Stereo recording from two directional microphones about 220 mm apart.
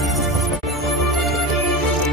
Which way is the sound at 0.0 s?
Centre (ahead or behind).